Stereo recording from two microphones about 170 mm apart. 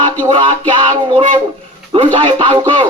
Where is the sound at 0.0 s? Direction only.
30° right (ahead or behind).